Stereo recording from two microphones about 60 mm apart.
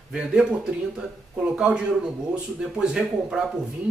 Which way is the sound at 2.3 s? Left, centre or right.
Centre.